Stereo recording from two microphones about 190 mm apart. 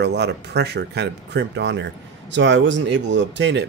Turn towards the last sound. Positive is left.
turn(degrees=-65)  # may be behind; listen again after turning